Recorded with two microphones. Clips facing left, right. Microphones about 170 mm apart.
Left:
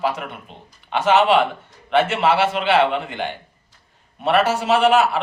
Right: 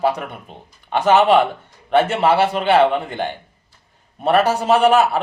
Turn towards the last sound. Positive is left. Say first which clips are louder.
# right 2 dB
turn(degrees=-45)  # may be behind; listen again after turning